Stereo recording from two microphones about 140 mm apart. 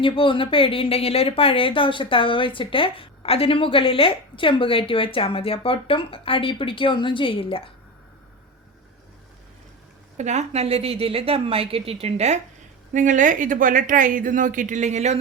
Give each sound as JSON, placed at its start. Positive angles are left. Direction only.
{"t": 0.0, "sound": "speech", "side_deg": 40}
{"t": 10.2, "sound": "a woman's voice", "side_deg": -55}
{"t": 12.9, "sound": "speech", "side_deg": -65}